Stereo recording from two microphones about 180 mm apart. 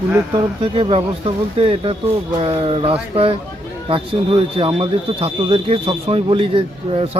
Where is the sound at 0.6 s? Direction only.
30° right (ahead or behind).